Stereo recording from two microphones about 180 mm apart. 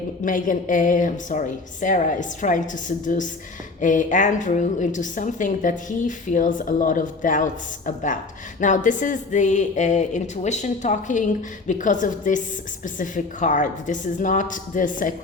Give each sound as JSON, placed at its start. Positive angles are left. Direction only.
{"t": 0.3, "sound": "a woman's voice", "side_deg": 45}